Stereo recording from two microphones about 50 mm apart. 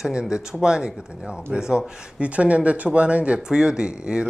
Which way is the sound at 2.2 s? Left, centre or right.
Right.